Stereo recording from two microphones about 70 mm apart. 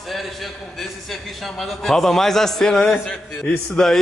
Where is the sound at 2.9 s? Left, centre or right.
Centre.